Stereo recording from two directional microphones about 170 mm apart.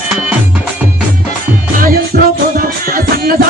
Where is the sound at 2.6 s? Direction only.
60° right (ahead or behind).